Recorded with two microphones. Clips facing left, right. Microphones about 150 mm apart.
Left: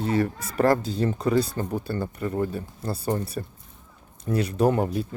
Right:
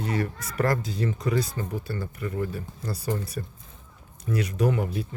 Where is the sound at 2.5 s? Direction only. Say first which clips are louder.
Left 3 dB; 30° left (ahead or behind).